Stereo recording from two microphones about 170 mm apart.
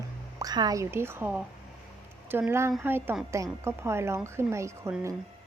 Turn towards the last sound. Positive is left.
turn(degrees=-15)  # may be behind; listen again after turning